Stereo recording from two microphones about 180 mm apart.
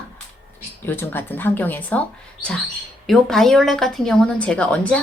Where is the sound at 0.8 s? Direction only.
10° left (ahead or behind).